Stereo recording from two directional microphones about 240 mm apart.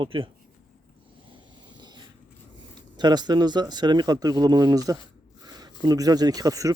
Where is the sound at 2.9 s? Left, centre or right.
Centre.